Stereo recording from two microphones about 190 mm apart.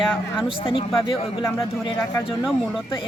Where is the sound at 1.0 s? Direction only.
25° left (ahead or behind).